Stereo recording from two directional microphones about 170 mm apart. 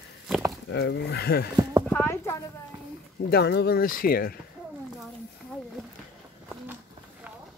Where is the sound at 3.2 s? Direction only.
75° left (ahead or behind).